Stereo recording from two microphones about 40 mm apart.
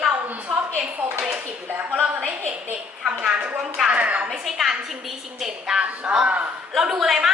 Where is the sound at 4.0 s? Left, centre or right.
Right.